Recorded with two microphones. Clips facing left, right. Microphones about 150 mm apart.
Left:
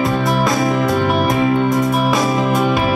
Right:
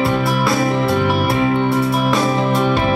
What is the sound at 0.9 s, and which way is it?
Music, 40° left (ahead or behind).